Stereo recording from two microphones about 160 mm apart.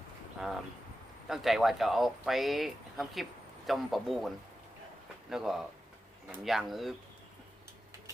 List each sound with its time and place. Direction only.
1.3 s speech: centre (ahead or behind)